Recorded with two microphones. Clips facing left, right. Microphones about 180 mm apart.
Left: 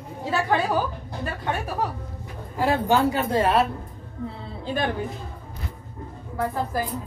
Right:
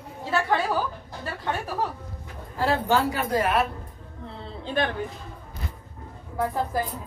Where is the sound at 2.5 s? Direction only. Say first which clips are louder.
Left 2 dB; 15° left (ahead or behind).